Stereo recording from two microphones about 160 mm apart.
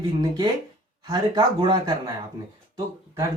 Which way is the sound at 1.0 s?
25° right (ahead or behind).